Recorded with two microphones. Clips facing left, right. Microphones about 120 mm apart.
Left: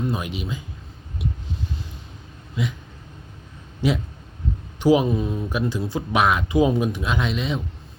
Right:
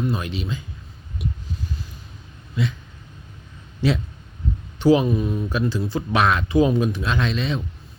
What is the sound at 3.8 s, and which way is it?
Speech, 15° left (ahead or behind).